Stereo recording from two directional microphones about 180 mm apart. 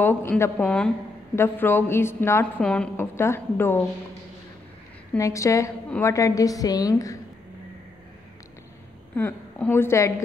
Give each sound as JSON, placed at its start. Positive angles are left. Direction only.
{"t": 0.0, "sound": "a woman's voice", "side_deg": 10}
{"t": 5.1, "sound": "a woman's voice", "side_deg": 15}
{"t": 9.1, "sound": "a woman's voice", "side_deg": 10}